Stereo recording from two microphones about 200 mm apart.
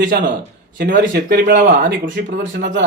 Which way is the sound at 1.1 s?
45° right (ahead or behind).